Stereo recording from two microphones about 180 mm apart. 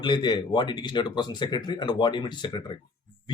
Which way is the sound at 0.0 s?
25° left (ahead or behind).